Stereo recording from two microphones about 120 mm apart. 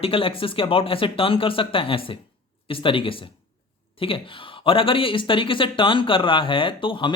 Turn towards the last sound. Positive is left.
turn(degrees=45)  # may be behind; listen again after turning